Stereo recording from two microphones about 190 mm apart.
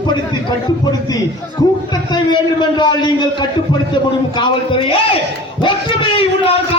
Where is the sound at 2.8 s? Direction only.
25° left (ahead or behind).